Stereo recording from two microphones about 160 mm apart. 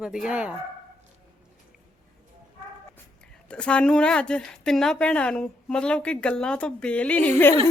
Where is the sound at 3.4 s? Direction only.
5° left (ahead or behind).